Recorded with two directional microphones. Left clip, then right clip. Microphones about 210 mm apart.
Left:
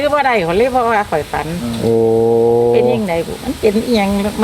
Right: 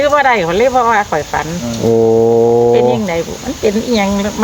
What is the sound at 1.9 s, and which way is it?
Brass instrument, 20° right (ahead or behind).